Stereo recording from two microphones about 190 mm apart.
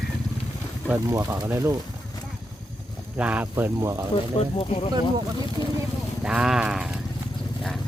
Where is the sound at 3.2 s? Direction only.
5° right (ahead or behind).